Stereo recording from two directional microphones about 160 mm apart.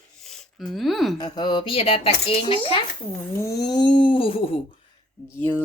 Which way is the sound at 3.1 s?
15° left (ahead or behind).